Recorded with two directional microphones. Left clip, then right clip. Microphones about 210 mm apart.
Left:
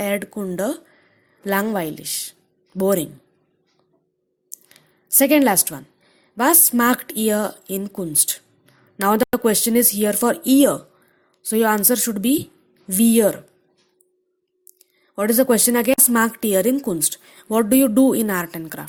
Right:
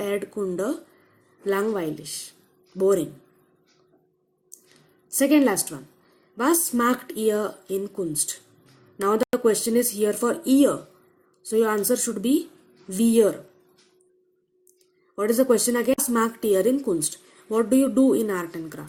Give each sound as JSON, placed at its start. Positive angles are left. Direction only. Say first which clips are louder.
{"t": 0.0, "sound": "speech", "louder": "left 3 dB", "side_deg": 45}
{"t": 4.5, "sound": "a sound", "louder": "left 7 dB", "side_deg": 45}
{"t": 6.3, "sound": "speech", "louder": "left 5 dB", "side_deg": 45}
{"t": 15.1, "sound": "speech", "louder": "left 3 dB", "side_deg": 45}